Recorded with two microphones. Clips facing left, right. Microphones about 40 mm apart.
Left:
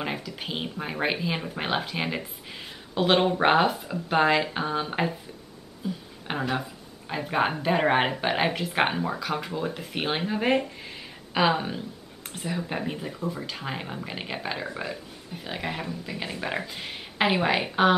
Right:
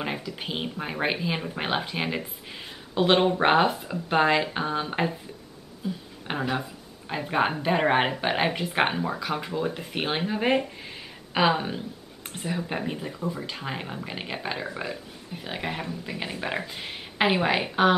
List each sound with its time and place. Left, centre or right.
0.0 s speech: centre